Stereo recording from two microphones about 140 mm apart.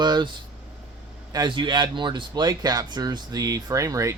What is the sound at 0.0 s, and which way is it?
Speech, 30° right (ahead or behind).